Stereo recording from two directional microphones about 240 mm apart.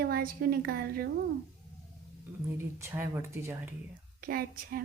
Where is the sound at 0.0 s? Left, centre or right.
Right.